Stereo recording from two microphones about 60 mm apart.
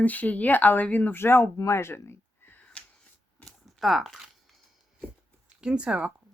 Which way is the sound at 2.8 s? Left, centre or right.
Left.